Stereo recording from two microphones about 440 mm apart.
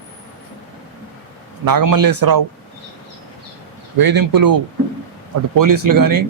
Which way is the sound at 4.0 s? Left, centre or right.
Right.